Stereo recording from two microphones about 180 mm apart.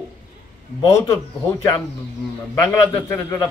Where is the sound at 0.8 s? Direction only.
15° left (ahead or behind).